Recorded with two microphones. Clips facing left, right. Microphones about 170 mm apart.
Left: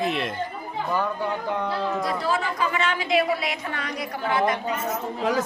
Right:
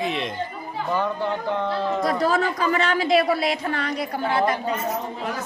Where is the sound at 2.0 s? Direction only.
45° right (ahead or behind).